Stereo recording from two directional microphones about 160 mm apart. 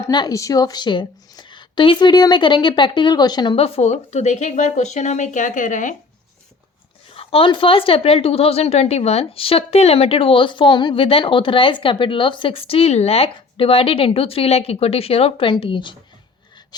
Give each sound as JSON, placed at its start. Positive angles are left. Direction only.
{"t": 0.0, "sound": "a woman's voice", "side_deg": 25}
{"t": 7.1, "sound": "a woman's voice", "side_deg": 35}